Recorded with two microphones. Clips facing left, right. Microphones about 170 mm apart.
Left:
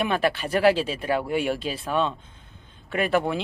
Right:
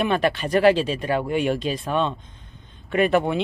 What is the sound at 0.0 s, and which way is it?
Speech, 10° left (ahead or behind).